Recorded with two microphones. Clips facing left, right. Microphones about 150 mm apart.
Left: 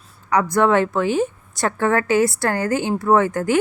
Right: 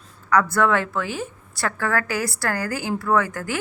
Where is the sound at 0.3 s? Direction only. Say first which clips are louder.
Left 2 dB; 20° left (ahead or behind).